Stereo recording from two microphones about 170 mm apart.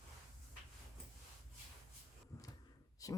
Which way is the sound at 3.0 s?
20° left (ahead or behind).